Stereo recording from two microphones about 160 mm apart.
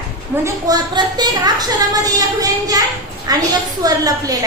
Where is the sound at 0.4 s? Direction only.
25° right (ahead or behind).